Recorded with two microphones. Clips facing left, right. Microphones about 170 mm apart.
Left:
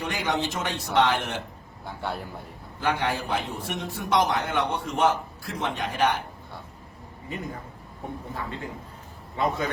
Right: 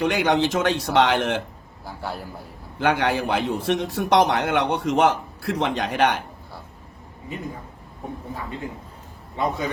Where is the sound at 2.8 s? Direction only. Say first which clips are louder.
Right 5 dB; 80° right.